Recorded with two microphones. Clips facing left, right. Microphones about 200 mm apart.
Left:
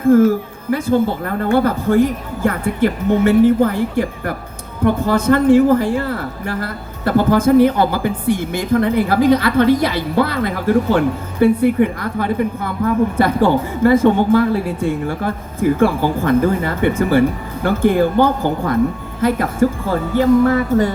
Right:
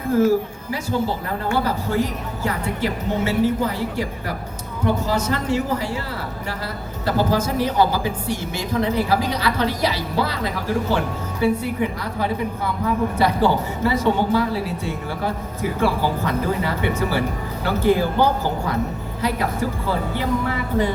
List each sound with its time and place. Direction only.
0.0 s speech: 50° left (ahead or behind)